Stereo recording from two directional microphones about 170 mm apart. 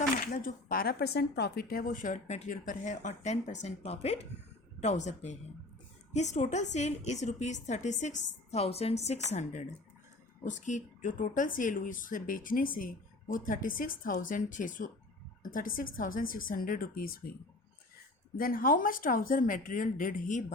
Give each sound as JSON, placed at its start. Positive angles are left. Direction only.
{"t": 0.2, "sound": "a woman's voice", "side_deg": 60}
{"t": 18.3, "sound": "a woman's voice", "side_deg": 55}